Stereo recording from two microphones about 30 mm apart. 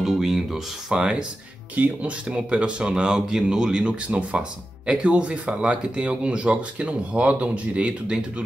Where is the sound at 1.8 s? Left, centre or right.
Right.